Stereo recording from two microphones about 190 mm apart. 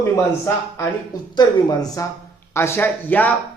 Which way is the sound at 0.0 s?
15° left (ahead or behind).